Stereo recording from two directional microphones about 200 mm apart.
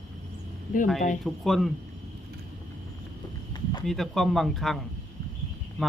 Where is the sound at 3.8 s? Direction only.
Centre (ahead or behind).